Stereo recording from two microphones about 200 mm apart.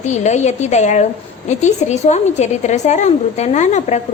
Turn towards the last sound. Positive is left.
turn(degrees=35)  # may be behind; listen again after turning